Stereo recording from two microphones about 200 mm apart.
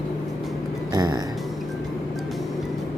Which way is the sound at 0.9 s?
20° right (ahead or behind).